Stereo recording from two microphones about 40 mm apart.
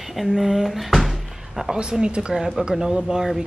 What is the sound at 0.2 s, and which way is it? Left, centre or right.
Speech, centre.